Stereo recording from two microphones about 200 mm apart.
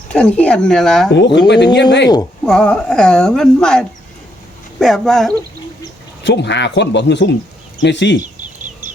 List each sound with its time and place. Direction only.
0.1 s speech: 5° left (ahead or behind)
1.5 s speech: 60° left (ahead or behind)
2.4 s speech: 5° left (ahead or behind)
6.2 s speech: 60° left (ahead or behind)